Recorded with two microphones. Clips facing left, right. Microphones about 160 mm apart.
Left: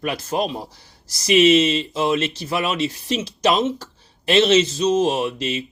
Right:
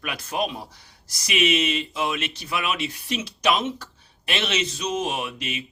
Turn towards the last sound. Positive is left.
turn(degrees=30)  # may be behind; listen again after turning